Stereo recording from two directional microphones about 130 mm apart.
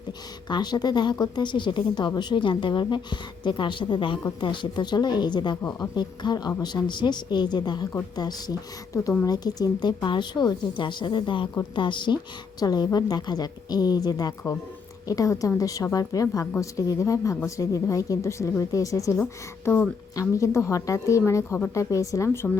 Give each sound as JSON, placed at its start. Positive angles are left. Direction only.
{"t": 0.4, "sound": "speech", "side_deg": 35}